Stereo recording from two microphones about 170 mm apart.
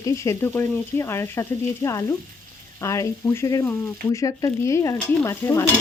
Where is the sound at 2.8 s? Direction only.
15° left (ahead or behind).